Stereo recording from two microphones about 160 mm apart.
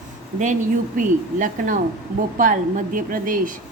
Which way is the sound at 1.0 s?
55° right (ahead or behind).